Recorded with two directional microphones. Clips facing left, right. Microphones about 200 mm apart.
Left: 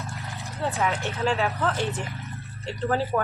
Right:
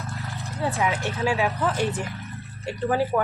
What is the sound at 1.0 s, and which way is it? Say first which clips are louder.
Speech: right 1 dB; 15° right (ahead or behind).